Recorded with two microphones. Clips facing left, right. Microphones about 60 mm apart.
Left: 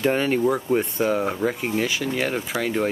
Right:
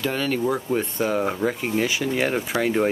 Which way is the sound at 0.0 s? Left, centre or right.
Left.